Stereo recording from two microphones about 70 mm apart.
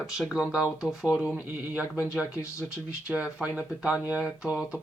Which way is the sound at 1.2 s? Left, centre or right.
Centre.